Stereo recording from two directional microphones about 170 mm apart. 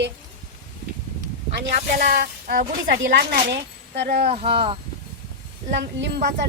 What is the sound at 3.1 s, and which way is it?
Speech, 80° right.